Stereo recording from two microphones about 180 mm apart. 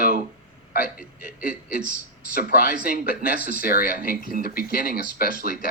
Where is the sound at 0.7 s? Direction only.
55° left (ahead or behind).